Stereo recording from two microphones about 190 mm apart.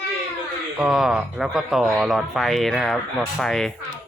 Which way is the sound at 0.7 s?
Centre (ahead or behind).